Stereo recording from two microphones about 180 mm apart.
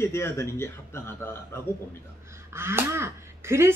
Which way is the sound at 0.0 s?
15° left (ahead or behind).